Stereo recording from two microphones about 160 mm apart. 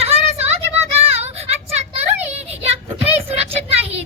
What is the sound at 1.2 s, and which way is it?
Vehicle, 40° right (ahead or behind).